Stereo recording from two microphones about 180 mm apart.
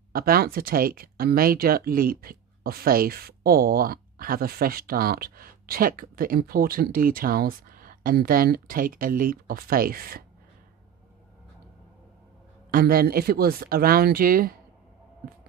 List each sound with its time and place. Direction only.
0.1 s speech: 55° right (ahead or behind)
12.7 s speech: 55° right (ahead or behind)